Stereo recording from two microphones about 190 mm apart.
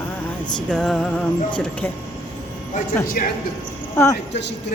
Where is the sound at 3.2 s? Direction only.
50° left (ahead or behind).